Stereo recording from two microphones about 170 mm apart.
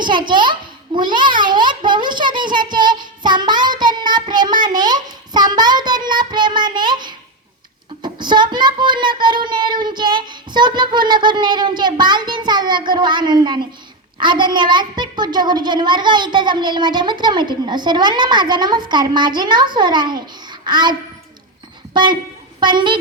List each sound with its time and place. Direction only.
0.0 s a child's voice: 25° right (ahead or behind)
21.9 s a child's voice: 25° right (ahead or behind)